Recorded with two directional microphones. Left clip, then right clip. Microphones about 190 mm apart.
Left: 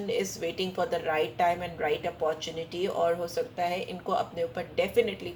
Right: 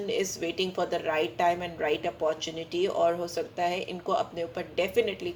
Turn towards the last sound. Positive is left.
turn(degrees=-40)  # may be behind; listen again after turning